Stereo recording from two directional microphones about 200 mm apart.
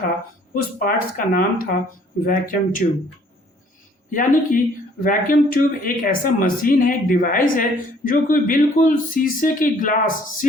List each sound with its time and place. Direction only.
0.5 s speech: 45° left (ahead or behind)
4.1 s speech: 40° left (ahead or behind)